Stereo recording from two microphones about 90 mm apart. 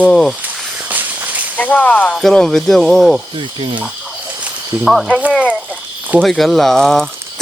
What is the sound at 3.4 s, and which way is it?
Stir, 75° right (ahead or behind).